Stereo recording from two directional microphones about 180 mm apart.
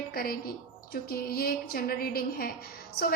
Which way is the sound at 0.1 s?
55° left (ahead or behind).